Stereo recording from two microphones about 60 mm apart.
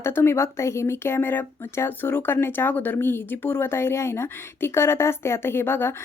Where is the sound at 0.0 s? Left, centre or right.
Left.